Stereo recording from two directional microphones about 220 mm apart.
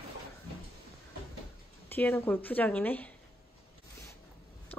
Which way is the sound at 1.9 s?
10° left (ahead or behind).